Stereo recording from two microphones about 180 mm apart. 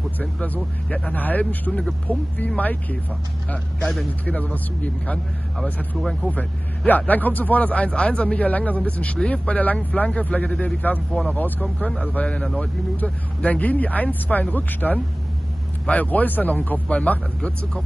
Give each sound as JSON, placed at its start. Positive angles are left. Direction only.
{"t": 0.2, "sound": "speech", "side_deg": 5}